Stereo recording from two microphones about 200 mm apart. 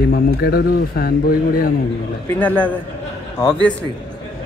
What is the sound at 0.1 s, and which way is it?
A man's voice, 50° left (ahead or behind).